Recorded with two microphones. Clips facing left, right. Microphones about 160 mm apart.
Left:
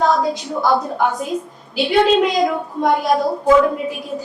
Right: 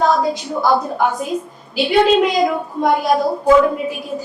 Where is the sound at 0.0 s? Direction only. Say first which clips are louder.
Right 1 dB; centre (ahead or behind).